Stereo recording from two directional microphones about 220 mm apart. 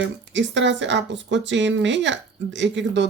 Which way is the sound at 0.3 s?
55° right (ahead or behind).